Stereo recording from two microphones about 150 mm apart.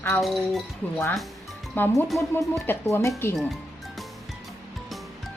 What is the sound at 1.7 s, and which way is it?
Speech, 15° left (ahead or behind).